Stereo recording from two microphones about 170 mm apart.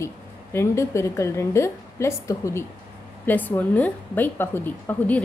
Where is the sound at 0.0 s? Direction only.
15° left (ahead or behind).